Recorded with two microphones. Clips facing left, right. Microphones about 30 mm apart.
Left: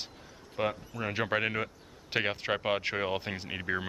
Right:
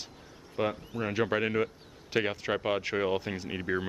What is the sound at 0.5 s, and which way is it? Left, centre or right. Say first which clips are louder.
Speech: right 1 dB; centre.